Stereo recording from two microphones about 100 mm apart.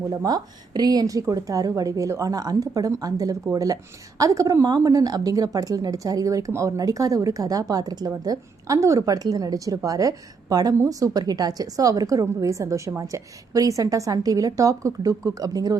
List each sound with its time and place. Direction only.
0.1 s a woman's voice: 40° right (ahead or behind)